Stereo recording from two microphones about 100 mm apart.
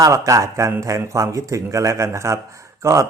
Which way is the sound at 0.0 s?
35° right (ahead or behind).